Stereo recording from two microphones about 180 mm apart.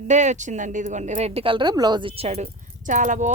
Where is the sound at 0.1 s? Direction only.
40° right (ahead or behind).